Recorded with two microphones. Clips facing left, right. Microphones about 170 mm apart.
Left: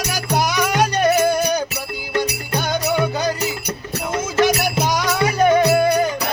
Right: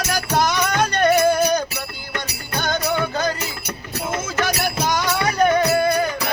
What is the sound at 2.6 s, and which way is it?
Music, 10° left (ahead or behind).